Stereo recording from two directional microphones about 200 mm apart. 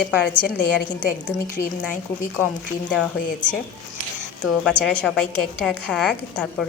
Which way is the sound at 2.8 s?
5° left (ahead or behind).